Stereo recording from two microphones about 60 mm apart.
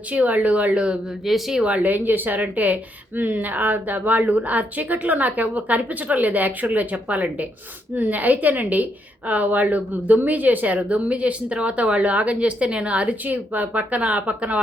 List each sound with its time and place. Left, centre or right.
0.1 s a woman's voice: right
1.2 s speech: centre
1.6 s a woman's voice: right